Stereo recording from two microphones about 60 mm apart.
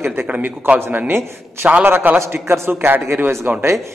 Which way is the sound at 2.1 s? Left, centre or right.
Right.